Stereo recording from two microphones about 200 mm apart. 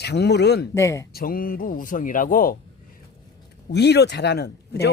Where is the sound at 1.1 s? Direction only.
45° left (ahead or behind).